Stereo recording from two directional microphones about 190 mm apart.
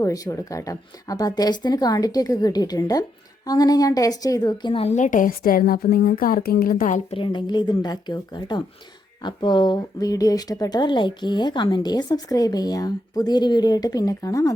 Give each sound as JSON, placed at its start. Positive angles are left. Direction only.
{"t": 0.0, "sound": "a woman's voice", "side_deg": 15}
{"t": 7.1, "sound": "speech", "side_deg": 25}